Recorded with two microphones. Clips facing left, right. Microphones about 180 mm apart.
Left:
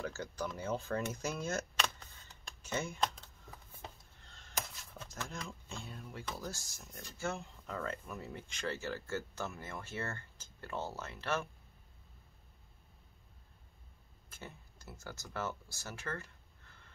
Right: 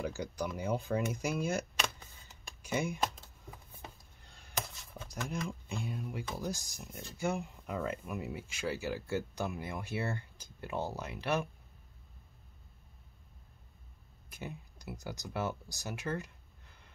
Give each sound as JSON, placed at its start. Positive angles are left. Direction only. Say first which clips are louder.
{"t": 0.0, "sound": "speech", "louder": "right 3 dB", "side_deg": -15}
{"t": 4.2, "sound": "a sound", "louder": "right 1 dB", "side_deg": -10}
{"t": 5.0, "sound": "speech", "louder": "right 6 dB", "side_deg": -15}
{"t": 14.3, "sound": "speech", "louder": "right 6 dB", "side_deg": -15}